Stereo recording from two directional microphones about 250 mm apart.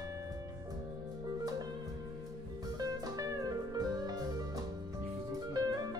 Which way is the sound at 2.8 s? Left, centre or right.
Centre.